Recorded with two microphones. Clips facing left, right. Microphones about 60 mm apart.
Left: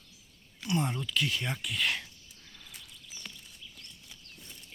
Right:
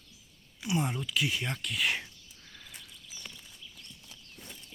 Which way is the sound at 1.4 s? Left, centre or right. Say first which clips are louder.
Even; centre.